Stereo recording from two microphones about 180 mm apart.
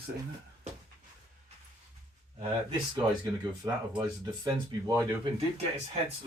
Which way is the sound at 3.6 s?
20° right (ahead or behind).